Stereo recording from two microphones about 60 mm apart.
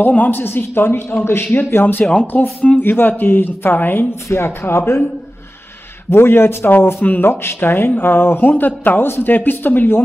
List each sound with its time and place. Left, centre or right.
0.0 s speech: left
2.3 s speech: left
4.1 s speech: left
6.0 s speech: left